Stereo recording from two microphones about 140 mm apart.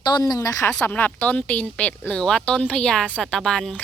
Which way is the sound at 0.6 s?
10° left (ahead or behind).